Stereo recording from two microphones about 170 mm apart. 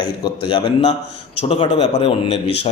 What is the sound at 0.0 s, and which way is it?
A man's voice, 25° left (ahead or behind).